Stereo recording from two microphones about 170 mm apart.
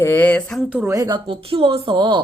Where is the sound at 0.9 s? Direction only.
25° right (ahead or behind).